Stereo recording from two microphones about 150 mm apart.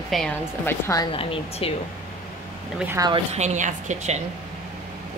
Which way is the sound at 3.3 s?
50° right (ahead or behind).